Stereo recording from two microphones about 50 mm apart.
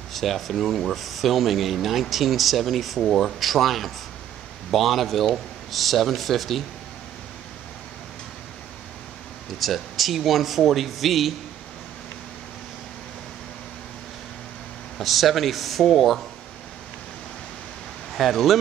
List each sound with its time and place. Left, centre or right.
0.1 s speech: centre
9.6 s speech: centre
15.0 s speech: centre
18.1 s speech: centre